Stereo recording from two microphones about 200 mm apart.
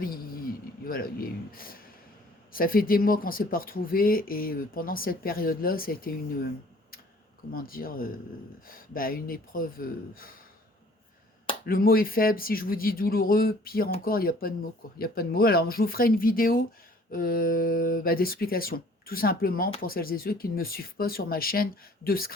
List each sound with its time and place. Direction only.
0.9 s speech: 45° left (ahead or behind)
7.5 s speech: 45° left (ahead or behind)
11.6 s speech: 45° left (ahead or behind)